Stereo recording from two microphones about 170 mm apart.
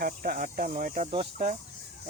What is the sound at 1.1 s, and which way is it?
Speech, 35° right (ahead or behind).